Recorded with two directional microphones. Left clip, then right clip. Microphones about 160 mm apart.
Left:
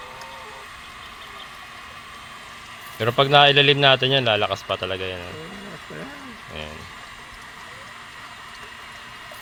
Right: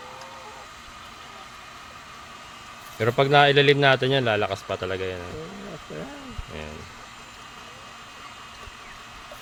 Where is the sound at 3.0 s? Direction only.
20° right (ahead or behind).